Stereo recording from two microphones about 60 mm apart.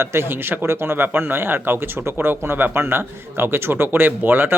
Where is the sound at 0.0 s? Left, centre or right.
Right.